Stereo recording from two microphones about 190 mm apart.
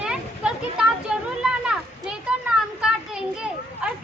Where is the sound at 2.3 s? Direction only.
5° right (ahead or behind).